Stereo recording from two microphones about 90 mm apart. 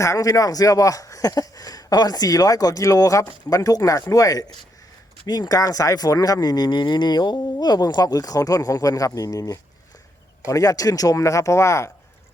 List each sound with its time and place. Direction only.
0.0 s speech: 35° left (ahead or behind)